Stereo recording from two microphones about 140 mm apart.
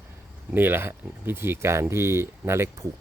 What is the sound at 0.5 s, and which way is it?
Speech, 15° right (ahead or behind).